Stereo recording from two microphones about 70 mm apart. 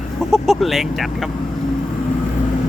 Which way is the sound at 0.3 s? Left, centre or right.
Centre.